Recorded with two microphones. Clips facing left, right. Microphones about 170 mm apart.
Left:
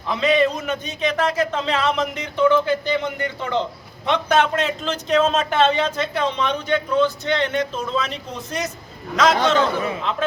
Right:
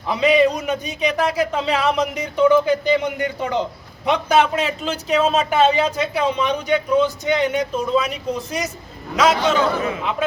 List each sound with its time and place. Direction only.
0.1 s a man's voice: 10° right (ahead or behind)